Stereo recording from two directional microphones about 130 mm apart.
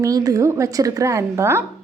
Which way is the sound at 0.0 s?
30° right (ahead or behind).